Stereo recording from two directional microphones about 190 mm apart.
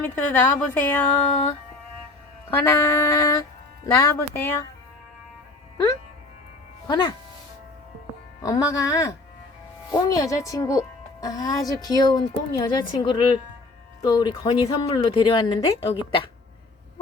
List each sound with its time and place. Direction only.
0.0 s a woman's voice: 10° left (ahead or behind)
2.5 s a woman's voice: 15° left (ahead or behind)
6.8 s speech: 20° left (ahead or behind)
8.4 s a woman's voice: 20° left (ahead or behind)